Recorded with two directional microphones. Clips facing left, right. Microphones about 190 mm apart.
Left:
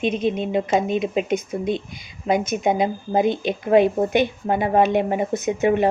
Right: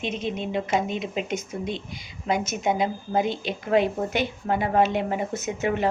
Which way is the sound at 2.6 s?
20° left (ahead or behind).